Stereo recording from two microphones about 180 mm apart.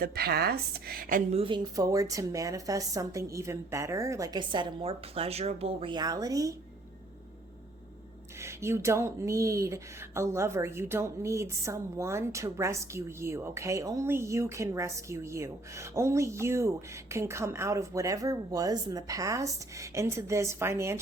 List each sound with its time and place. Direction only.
0.0 s speech: 60° right (ahead or behind)
1.3 s speech: 30° right (ahead or behind)
8.4 s speech: 15° right (ahead or behind)